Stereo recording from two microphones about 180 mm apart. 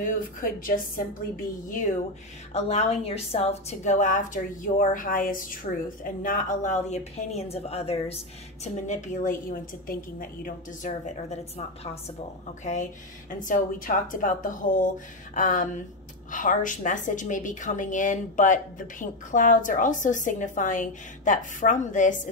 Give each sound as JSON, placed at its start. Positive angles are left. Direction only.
{"t": 0.0, "sound": "a woman's voice", "side_deg": 50}
{"t": 2.5, "sound": "a woman's voice", "side_deg": 35}